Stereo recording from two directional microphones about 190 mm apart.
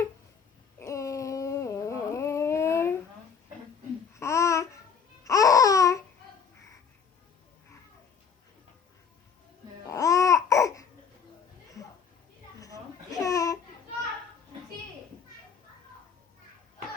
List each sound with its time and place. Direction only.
0.8 s a sound: 15° left (ahead or behind)
4.1 s babbling: 15° left (ahead or behind)
9.8 s babbling: 15° left (ahead or behind)
12.5 s babbling: 15° left (ahead or behind)